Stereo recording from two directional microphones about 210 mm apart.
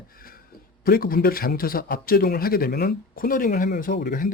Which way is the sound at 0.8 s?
45° left (ahead or behind).